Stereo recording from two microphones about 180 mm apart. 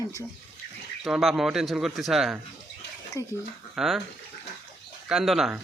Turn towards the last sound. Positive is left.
turn(degrees=0)  # may be behind; listen again after turning